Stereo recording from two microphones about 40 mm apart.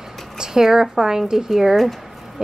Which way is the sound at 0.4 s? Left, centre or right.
Centre.